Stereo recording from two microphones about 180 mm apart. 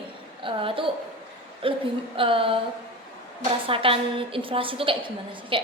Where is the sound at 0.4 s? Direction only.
30° right (ahead or behind).